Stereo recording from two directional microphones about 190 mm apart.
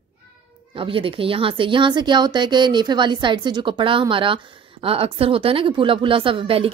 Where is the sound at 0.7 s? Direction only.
30° right (ahead or behind).